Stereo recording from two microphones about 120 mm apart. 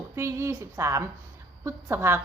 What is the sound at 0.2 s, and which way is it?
A woman's voice, 25° right (ahead or behind).